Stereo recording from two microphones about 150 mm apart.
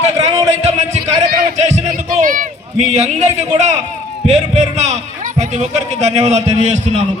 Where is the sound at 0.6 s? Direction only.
50° right (ahead or behind).